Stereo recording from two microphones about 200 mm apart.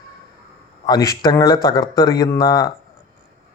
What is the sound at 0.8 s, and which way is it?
Speech, 20° left (ahead or behind).